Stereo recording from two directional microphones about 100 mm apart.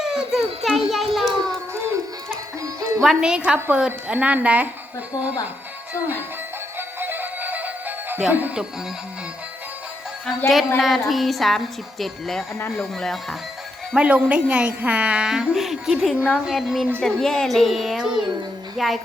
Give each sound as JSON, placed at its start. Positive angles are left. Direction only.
{"t": 0.0, "sound": "a woman's voice", "side_deg": -5}
{"t": 3.0, "sound": "a woman's voice", "side_deg": -5}
{"t": 6.7, "sound": "music", "side_deg": -20}
{"t": 8.3, "sound": "a woman's voice", "side_deg": -15}
{"t": 10.8, "sound": "a woman's voice", "side_deg": 0}
{"t": 13.9, "sound": "a woman's voice", "side_deg": -10}